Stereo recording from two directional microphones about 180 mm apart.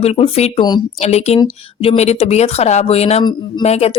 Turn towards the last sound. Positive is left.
turn(degrees=35)  # may be behind; listen again after turning